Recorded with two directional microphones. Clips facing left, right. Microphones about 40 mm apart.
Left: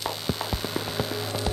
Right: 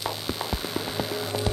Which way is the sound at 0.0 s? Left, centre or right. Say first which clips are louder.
Even; centre.